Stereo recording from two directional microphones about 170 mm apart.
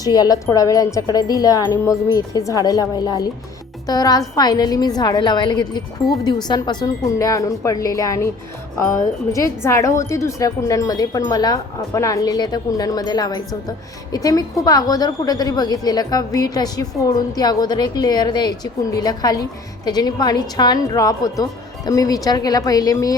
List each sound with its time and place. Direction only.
0.0 s speech: 20° left (ahead or behind)